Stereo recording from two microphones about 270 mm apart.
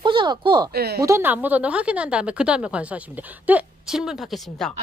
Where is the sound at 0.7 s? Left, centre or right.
Right.